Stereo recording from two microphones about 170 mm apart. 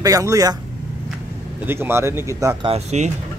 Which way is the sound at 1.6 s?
15° right (ahead or behind).